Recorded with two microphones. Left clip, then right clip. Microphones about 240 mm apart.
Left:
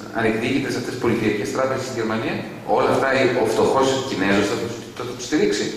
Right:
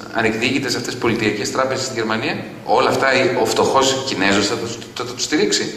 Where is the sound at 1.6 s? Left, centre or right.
Centre.